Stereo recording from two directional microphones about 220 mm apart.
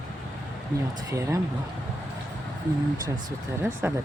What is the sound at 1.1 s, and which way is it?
Speech, 15° right (ahead or behind).